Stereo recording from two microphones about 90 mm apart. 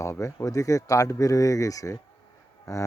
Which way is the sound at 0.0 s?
35° left (ahead or behind).